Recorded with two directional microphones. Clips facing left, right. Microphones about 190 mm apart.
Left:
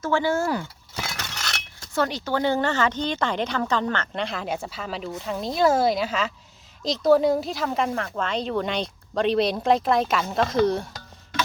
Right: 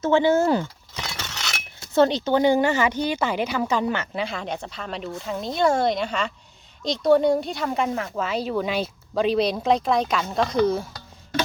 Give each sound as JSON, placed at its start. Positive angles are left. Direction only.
{"t": 0.0, "sound": "speech", "side_deg": -20}
{"t": 1.0, "sound": "chink", "side_deg": 0}
{"t": 1.9, "sound": "speech", "side_deg": -25}